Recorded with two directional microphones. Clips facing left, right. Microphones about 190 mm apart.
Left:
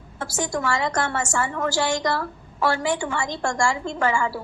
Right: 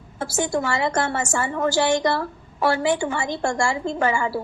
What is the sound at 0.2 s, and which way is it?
A woman's voice, 30° right (ahead or behind).